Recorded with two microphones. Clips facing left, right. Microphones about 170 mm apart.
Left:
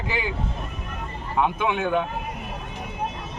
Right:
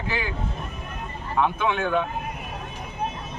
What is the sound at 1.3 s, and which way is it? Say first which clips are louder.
Speech: even; 15° left (ahead or behind).